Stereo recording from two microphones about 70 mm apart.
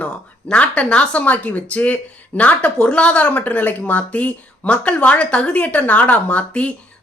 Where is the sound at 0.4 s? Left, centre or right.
Centre.